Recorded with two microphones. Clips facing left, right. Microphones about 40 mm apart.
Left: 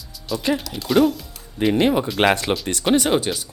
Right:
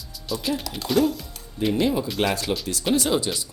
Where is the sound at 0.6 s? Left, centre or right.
Centre.